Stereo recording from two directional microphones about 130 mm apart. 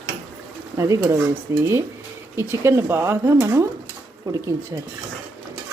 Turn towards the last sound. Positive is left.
turn(degrees=-25)  # may be behind; listen again after turning